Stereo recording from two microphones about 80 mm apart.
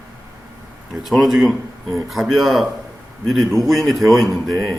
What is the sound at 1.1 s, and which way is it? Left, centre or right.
A man's voice, centre.